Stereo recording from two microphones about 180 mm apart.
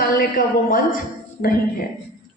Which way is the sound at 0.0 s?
55° left (ahead or behind).